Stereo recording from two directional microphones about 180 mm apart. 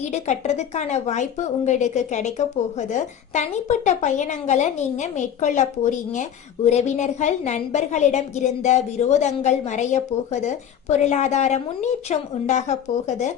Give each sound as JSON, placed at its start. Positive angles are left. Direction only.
{"t": 0.1, "sound": "a woman's voice", "side_deg": 40}